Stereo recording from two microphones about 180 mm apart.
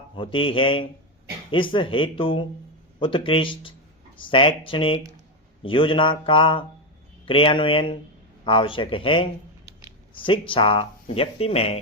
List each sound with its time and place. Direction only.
0.2 s speech: 30° left (ahead or behind)
10.2 s speech: 30° left (ahead or behind)